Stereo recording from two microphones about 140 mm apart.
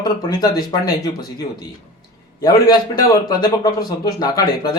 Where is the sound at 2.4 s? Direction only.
30° left (ahead or behind).